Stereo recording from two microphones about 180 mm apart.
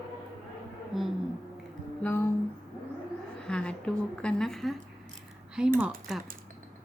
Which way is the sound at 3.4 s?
5° left (ahead or behind).